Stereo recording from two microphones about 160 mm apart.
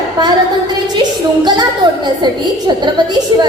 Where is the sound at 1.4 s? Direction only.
30° right (ahead or behind).